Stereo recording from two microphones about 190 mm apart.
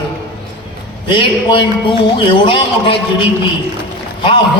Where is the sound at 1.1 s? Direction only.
25° left (ahead or behind).